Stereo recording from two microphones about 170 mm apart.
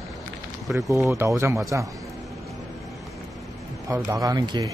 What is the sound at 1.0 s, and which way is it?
Speech, 15° right (ahead or behind).